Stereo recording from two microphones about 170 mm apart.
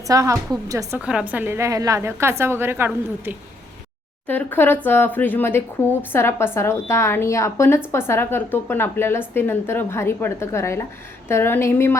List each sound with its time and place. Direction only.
0.1 s a woman's voice: 20° right (ahead or behind)
0.9 s a woman's voice: 5° right (ahead or behind)
4.3 s a woman's voice: 10° left (ahead or behind)